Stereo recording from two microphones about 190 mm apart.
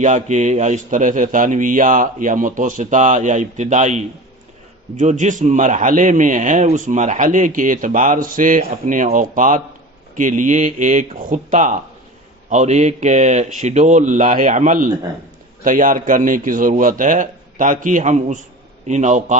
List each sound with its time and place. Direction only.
0.0 s a man's voice: 40° right (ahead or behind)